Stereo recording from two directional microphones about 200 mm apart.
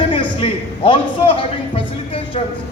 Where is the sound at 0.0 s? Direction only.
25° left (ahead or behind).